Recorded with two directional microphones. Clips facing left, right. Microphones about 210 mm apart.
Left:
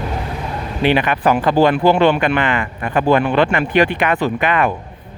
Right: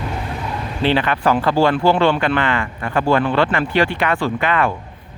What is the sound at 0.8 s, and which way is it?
Speech, 15° left (ahead or behind).